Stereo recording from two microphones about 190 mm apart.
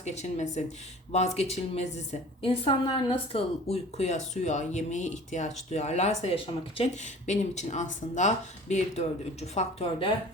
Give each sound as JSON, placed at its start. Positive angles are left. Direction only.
{"t": 0.0, "sound": "speech", "side_deg": 35}